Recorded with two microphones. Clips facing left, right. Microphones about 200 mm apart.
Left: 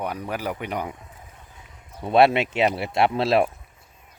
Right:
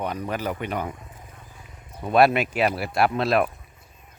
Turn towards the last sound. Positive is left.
turn(degrees=25)  # may be behind; listen again after turning